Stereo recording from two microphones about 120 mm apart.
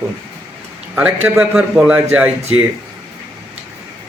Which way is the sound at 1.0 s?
10° right (ahead or behind).